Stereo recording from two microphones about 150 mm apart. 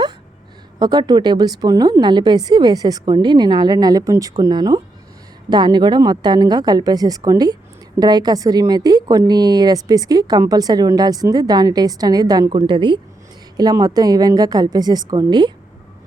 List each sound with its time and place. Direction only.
0.8 s a woman's voice: 30° right (ahead or behind)